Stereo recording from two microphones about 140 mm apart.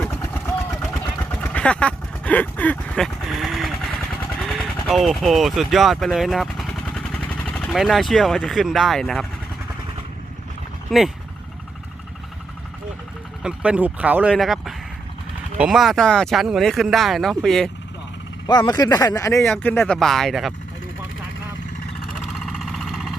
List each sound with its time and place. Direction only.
0.0 s vehicle: 15° left (ahead or behind)
4.4 s speech: centre (ahead or behind)
10.9 s speech: centre (ahead or behind)
13.4 s speech: 10° right (ahead or behind)
18.4 s speech: 30° left (ahead or behind); by 20.0 s 15° left (ahead or behind)
20.0 s speech: 5° left (ahead or behind)
22.4 s vehicle: centre (ahead or behind)